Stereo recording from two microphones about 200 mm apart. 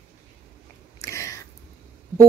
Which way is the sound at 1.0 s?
15° left (ahead or behind).